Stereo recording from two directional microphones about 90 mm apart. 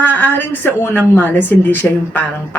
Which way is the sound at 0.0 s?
20° left (ahead or behind).